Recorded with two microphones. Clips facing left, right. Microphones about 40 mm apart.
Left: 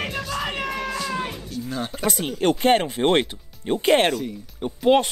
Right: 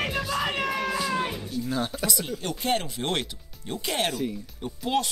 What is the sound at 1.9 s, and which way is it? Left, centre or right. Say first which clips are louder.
Speech: left 4 dB; left.